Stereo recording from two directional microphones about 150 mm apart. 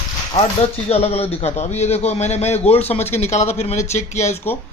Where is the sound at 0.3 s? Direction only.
45° left (ahead or behind).